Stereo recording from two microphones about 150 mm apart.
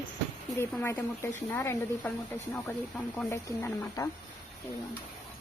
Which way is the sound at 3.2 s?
15° left (ahead or behind).